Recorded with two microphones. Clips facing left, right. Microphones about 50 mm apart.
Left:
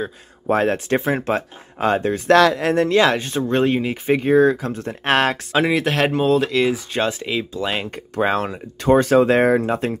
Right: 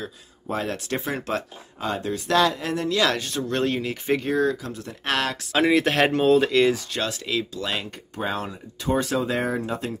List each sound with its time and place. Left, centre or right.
0.5 s speech: left
1.8 s speech: left
2.3 s speech: left
2.7 s speech: left
3.0 s speech: left
5.5 s speech: centre
6.9 s speech: left
7.8 s speech: left